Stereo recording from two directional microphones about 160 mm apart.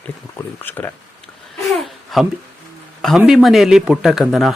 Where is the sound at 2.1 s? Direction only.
Centre (ahead or behind).